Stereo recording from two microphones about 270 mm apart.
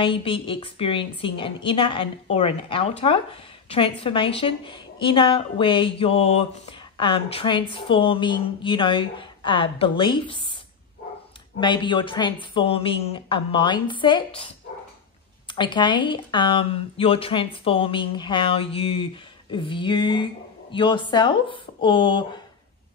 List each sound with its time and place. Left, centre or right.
0.0 s a woman's voice: centre
11.6 s a woman's voice: centre
15.4 s a woman's voice: centre